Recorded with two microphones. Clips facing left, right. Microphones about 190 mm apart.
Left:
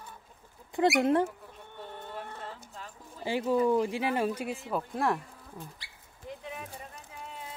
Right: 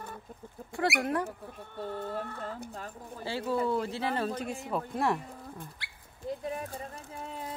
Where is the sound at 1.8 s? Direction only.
40° right (ahead or behind).